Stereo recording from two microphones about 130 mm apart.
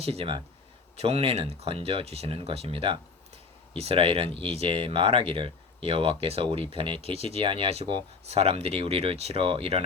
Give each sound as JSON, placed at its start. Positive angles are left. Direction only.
{"t": 0.0, "sound": "speech", "side_deg": -50}